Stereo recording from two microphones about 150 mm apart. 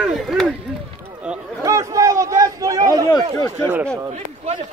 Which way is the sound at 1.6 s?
20° right (ahead or behind).